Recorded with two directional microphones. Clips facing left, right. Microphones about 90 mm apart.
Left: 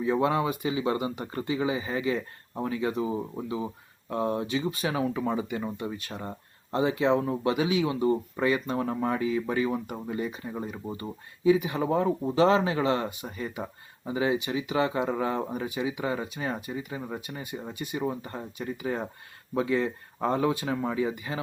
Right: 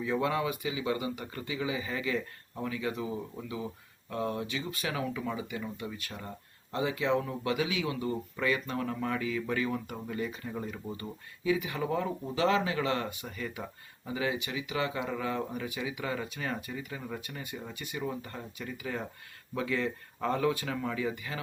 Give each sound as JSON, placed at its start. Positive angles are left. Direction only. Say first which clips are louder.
{"t": 0.0, "sound": "speech", "louder": "left 5 dB", "side_deg": 30}